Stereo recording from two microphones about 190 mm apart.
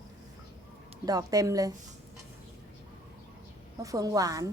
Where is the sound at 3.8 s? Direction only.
15° right (ahead or behind).